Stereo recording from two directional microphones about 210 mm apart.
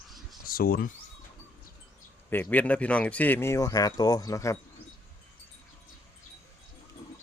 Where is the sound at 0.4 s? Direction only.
45° left (ahead or behind).